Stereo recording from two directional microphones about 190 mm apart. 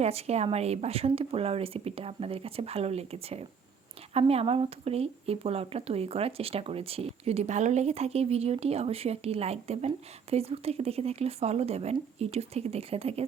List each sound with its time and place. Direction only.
0.0 s speech: 35° right (ahead or behind)